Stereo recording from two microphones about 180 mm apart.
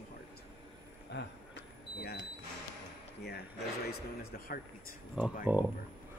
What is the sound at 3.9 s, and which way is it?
Speech, 55° left (ahead or behind).